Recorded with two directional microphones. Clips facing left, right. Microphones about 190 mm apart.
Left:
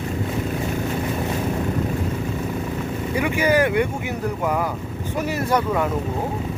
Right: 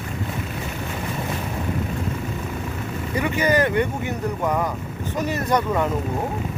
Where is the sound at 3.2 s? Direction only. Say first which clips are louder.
Left 1 dB; 10° left (ahead or behind).